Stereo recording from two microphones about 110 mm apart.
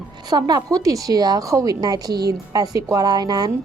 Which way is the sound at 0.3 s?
35° right (ahead or behind).